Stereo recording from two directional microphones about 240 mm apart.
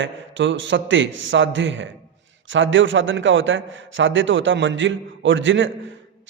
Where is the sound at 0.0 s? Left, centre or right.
Right.